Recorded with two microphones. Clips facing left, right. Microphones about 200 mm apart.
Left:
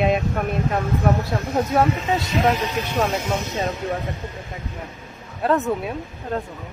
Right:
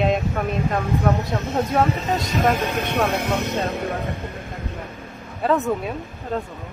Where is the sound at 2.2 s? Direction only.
50° right (ahead or behind).